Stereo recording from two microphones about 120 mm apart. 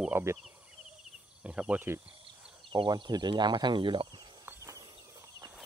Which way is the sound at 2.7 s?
40° right (ahead or behind).